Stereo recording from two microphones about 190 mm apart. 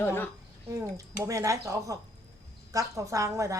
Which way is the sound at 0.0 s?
10° left (ahead or behind).